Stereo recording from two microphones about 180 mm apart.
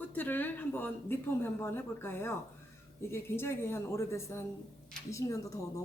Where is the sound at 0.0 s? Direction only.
10° left (ahead or behind).